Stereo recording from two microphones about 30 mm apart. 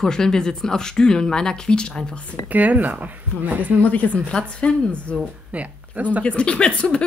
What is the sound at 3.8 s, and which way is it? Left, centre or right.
Speech, left.